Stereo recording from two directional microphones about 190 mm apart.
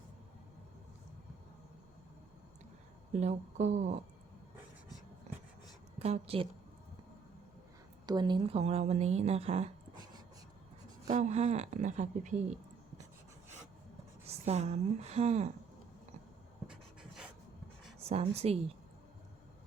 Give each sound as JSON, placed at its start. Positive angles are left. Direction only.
{"t": 3.1, "sound": "a woman's voice", "side_deg": -35}
{"t": 6.0, "sound": "a woman's voice", "side_deg": -30}
{"t": 8.0, "sound": "a woman's voice", "side_deg": -25}
{"t": 9.9, "sound": "a sound", "side_deg": -20}
{"t": 11.1, "sound": "a woman's voice", "side_deg": -35}
{"t": 14.3, "sound": "a woman's voice", "side_deg": -35}
{"t": 16.6, "sound": "pant", "side_deg": -5}
{"t": 18.0, "sound": "a woman's voice", "side_deg": -30}